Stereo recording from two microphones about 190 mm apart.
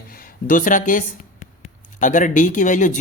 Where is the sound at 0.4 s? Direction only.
45° left (ahead or behind).